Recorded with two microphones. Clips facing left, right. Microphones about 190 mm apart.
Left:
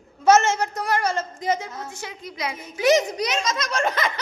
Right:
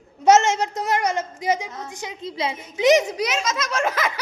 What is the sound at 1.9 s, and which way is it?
A woman's voice, 15° right (ahead or behind).